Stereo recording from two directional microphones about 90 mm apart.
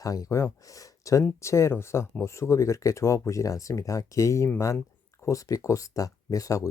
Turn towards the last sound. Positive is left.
turn(degrees=40)  # may be behind; listen again after turning